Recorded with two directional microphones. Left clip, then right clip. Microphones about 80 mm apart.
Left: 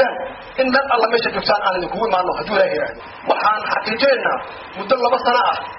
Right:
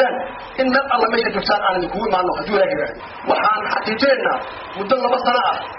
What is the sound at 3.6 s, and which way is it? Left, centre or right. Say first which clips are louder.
A man's voice: left 1 dB; centre.